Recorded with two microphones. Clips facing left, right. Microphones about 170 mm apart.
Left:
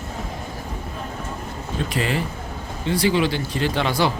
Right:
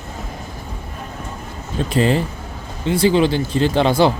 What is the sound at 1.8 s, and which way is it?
Speech, 30° right (ahead or behind).